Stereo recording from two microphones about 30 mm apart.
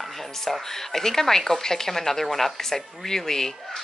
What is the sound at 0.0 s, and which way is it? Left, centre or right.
Speech, centre.